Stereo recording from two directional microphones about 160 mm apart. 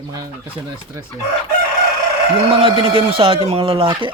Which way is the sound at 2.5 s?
35° right (ahead or behind).